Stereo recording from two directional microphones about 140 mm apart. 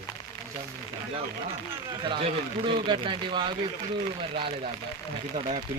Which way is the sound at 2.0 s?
40° right (ahead or behind).